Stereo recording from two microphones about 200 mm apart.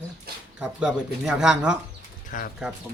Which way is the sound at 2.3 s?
40° left (ahead or behind).